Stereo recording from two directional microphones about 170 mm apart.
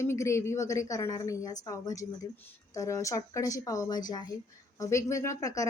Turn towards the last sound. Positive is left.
turn(degrees=20)  # may be behind; listen again after turning